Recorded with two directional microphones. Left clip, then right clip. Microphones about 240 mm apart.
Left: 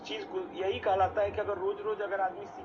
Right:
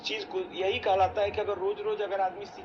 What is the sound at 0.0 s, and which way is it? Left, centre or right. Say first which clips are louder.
A man's voice: right 4 dB; centre.